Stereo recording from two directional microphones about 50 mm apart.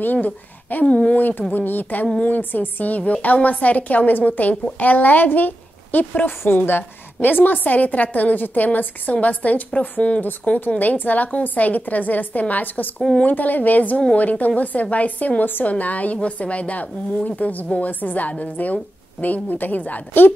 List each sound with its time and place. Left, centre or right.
0.0 s speech: left
0.8 s speech: left
1.1 s a woman's voice: left